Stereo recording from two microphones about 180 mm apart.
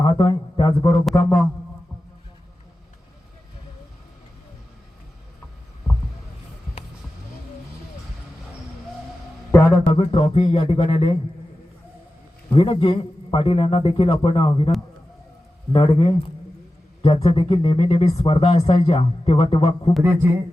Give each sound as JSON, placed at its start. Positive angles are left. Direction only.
{"t": 0.0, "sound": "a sound", "side_deg": 30}
{"t": 1.1, "sound": "a man's voice", "side_deg": 15}
{"t": 9.8, "sound": "speech", "side_deg": 35}
{"t": 12.5, "sound": "speech", "side_deg": 30}
{"t": 15.7, "sound": "speech", "side_deg": 30}
{"t": 20.0, "sound": "a sound", "side_deg": -10}